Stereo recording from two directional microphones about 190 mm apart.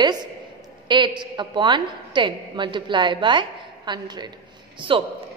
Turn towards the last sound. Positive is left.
turn(degrees=-25)  # may be behind; listen again after turning